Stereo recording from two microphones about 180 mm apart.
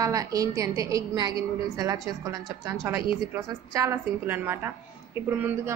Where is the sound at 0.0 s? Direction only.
20° right (ahead or behind).